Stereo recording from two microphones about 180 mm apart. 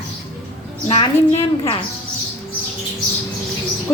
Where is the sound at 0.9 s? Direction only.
35° left (ahead or behind).